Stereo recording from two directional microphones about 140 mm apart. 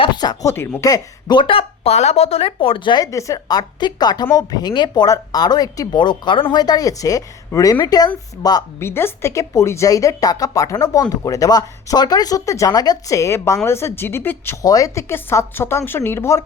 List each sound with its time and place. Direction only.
0.0 s speech: 30° left (ahead or behind)
8.8 s a woman's voice: 15° left (ahead or behind)